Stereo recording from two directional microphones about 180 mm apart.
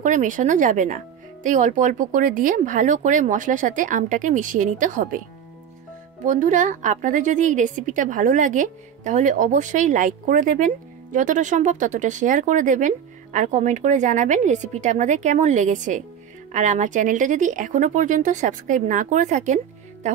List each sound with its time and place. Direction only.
0.0 s a woman's voice: 45° right (ahead or behind)
6.2 s a woman's voice: 45° right (ahead or behind)